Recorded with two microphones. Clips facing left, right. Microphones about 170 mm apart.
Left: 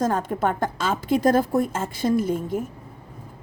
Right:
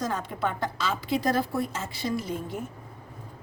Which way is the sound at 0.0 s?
50° left (ahead or behind).